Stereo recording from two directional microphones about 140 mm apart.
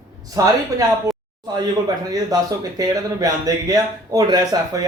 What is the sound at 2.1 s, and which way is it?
A man's voice, 25° right (ahead or behind).